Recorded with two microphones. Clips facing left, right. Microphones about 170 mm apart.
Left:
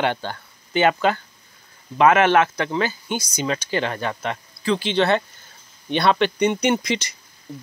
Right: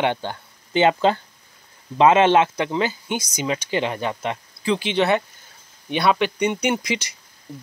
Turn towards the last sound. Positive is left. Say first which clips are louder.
# left 2 dB
turn(degrees=-10)  # may be behind; listen again after turning